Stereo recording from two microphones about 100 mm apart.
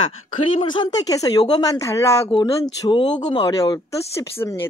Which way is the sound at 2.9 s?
50° left (ahead or behind).